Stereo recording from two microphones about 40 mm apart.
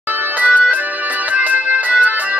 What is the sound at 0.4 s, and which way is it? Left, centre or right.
Music, left.